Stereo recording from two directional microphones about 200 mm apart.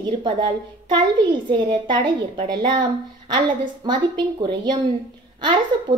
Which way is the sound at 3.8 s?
25° right (ahead or behind).